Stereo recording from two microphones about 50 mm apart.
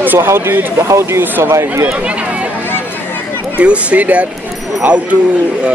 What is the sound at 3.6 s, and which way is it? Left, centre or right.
Speech, right.